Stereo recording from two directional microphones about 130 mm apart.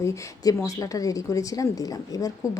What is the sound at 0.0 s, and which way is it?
A woman's voice, 25° left (ahead or behind).